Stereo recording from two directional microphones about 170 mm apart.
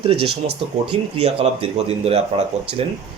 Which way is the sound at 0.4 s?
40° right (ahead or behind).